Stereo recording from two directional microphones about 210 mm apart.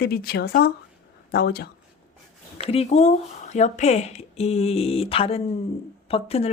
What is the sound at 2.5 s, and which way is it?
Speech, 30° left (ahead or behind).